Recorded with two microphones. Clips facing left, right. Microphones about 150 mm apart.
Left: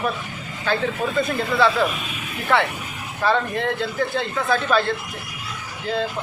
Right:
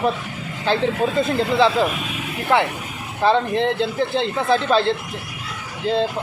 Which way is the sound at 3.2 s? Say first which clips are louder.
Right 4 dB; 25° right (ahead or behind).